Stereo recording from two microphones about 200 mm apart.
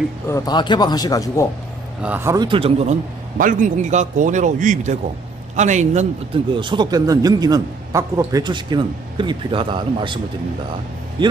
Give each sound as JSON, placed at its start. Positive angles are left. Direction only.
{"t": 0.3, "sound": "a man's voice", "side_deg": 20}
{"t": 2.0, "sound": "speech", "side_deg": -10}
{"t": 2.4, "sound": "speech", "side_deg": -25}
{"t": 3.3, "sound": "speech", "side_deg": -40}